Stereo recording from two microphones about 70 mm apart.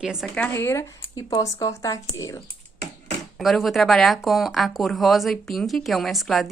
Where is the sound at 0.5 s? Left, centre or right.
Left.